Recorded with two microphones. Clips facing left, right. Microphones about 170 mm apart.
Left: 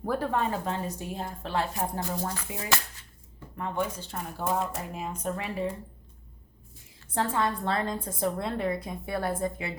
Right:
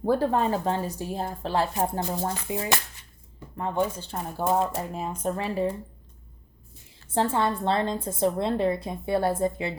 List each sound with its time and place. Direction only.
0.0 s speech: 30° right (ahead or behind)
2.0 s a woman's voice: 25° right (ahead or behind)
7.1 s a woman's voice: 30° right (ahead or behind)